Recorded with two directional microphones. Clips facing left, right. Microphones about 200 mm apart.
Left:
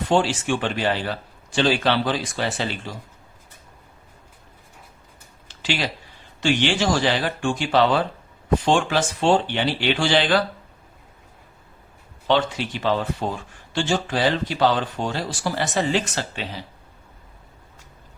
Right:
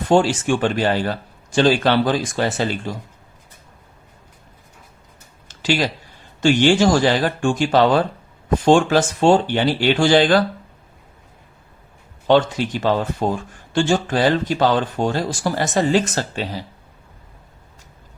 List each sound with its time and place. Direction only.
0.1 s speech: 45° right (ahead or behind)
5.5 s a sound: 45° right (ahead or behind)
6.4 s speech: 45° right (ahead or behind)
12.3 s speech: 45° right (ahead or behind)